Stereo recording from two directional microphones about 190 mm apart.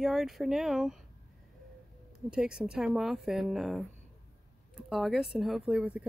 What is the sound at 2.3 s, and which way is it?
A woman's voice, 5° right (ahead or behind).